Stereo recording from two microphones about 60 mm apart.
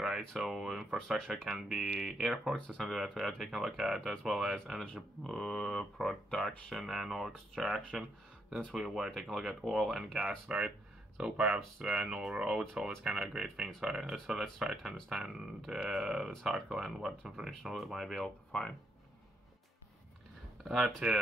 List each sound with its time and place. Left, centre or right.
0.4 s speech: centre
2.5 s speech: centre
2.8 s speech: centre
5.2 s speech: centre
20.6 s speech: centre